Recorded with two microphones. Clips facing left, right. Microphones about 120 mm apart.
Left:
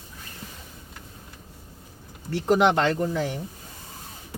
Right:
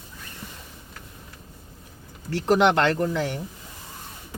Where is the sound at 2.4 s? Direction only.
90° right.